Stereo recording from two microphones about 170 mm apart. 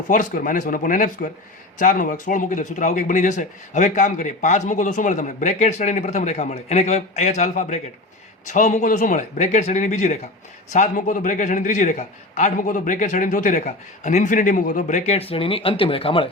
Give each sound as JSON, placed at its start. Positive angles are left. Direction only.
{"t": 0.1, "sound": "speech", "side_deg": 55}